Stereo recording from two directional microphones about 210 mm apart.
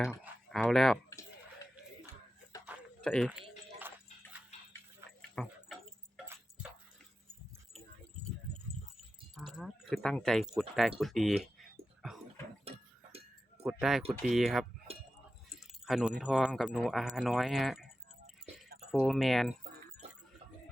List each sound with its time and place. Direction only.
0.4 s speech: centre (ahead or behind)
3.0 s speech: 5° left (ahead or behind)
3.8 s music: 10° right (ahead or behind)
5.3 s tick-tock: centre (ahead or behind)
9.0 s speech: centre (ahead or behind)
12.7 s a sound: 30° right (ahead or behind)
13.6 s speech: 5° right (ahead or behind)